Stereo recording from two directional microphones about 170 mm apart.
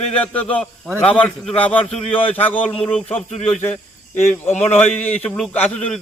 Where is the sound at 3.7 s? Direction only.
45° left (ahead or behind).